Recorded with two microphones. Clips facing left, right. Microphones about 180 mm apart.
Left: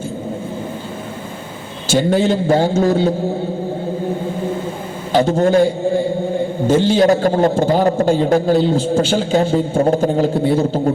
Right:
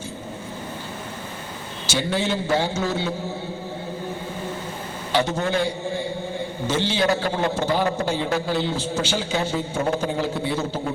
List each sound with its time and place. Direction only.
1.9 s a man's voice: 45° left (ahead or behind)
5.4 s a man's voice: 45° left (ahead or behind)